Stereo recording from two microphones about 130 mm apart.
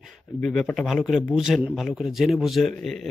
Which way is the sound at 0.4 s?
5° left (ahead or behind).